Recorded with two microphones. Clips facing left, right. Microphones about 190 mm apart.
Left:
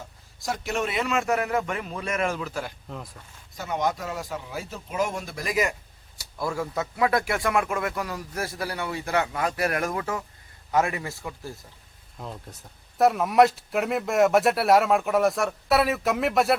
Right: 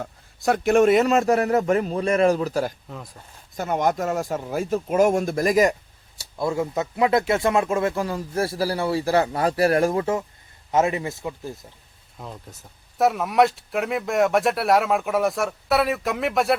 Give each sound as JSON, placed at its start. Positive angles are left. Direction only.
{"t": 0.0, "sound": "a man's voice", "side_deg": -60}
{"t": 2.9, "sound": "speech", "side_deg": 0}
{"t": 3.6, "sound": "speech", "side_deg": -50}
{"t": 6.1, "sound": "speech", "side_deg": -25}
{"t": 12.2, "sound": "speech", "side_deg": 0}